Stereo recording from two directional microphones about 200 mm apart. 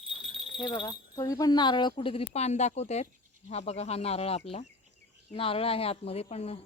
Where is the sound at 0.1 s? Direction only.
5° right (ahead or behind).